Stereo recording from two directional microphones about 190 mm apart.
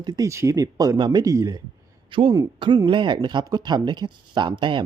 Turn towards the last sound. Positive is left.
turn(degrees=-25)  # may be behind; listen again after turning